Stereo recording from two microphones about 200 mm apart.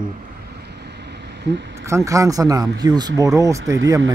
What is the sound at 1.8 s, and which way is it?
Speech, 15° right (ahead or behind).